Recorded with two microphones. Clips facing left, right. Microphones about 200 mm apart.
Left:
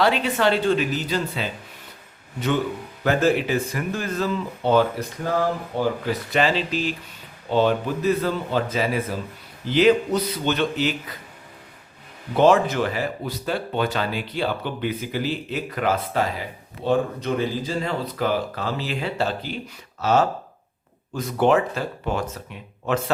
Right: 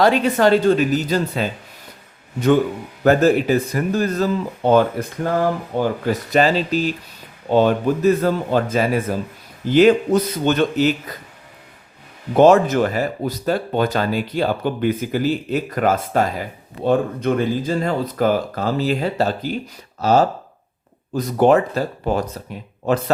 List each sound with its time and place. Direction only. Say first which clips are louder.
0.0 s speech: right 5 dB; 45° right (ahead or behind)
3.0 s speech: right 6 dB; 40° right (ahead or behind)
6.1 s speech: right 5 dB; 40° right (ahead or behind)
12.3 s speech: right 5 dB; 45° right (ahead or behind)